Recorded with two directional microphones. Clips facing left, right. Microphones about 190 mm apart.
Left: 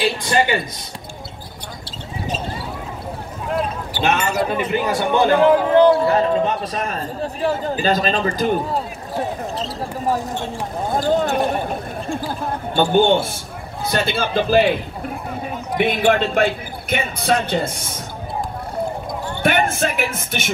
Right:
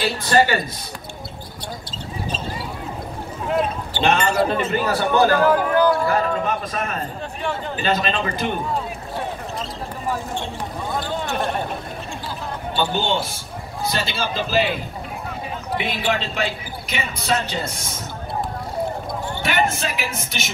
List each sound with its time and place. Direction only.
0.0 s speech: 20° left (ahead or behind)
3.4 s basketball bounce: centre (ahead or behind)
4.5 s speech: 10° left (ahead or behind); by 11.3 s 40° left (ahead or behind)
12.1 s a sound: 50° left (ahead or behind)
12.9 s a man's voice: 55° left (ahead or behind)
15.8 s speech: 55° left (ahead or behind)
19.4 s speech: 55° left (ahead or behind)